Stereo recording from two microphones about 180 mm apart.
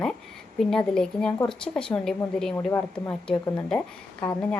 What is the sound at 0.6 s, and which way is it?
A woman's voice, 5° left (ahead or behind).